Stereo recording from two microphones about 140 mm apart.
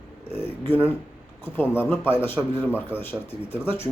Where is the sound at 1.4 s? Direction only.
15° left (ahead or behind).